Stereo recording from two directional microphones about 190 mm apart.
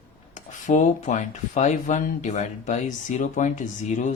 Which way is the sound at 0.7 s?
40° left (ahead or behind).